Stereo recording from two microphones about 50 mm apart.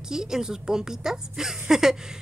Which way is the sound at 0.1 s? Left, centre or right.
Centre.